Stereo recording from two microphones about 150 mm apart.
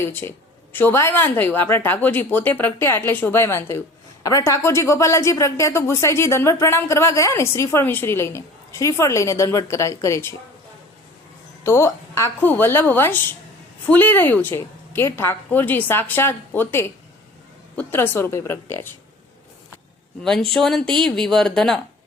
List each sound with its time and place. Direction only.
0.0 s a woman's voice: 15° left (ahead or behind)
11.6 s a woman's voice: 15° left (ahead or behind)
20.2 s speech: 5° left (ahead or behind)